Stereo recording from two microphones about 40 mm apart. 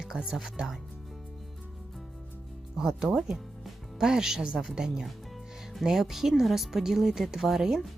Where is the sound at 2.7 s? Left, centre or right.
Centre.